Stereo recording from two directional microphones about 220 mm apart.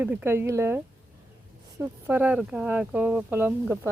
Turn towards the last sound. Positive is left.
turn(degrees=-10)  # may be behind; listen again after turning